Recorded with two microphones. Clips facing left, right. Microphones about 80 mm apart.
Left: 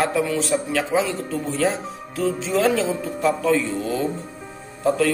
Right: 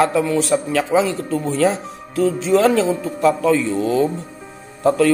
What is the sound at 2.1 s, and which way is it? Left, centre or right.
Music, right.